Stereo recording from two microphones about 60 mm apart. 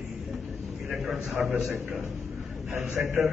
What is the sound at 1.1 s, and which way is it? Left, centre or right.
Speech, centre.